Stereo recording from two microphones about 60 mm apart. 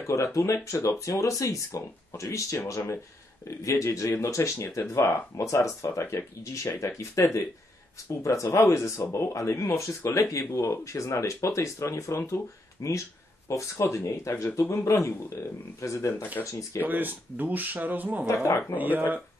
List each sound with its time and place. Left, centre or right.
0.0 s speech: left
8.2 s speech: left
12.8 s speech: left
13.5 s speech: left
16.4 s speech: left
16.8 s speech: right
18.2 s speech: left
18.8 s speech: right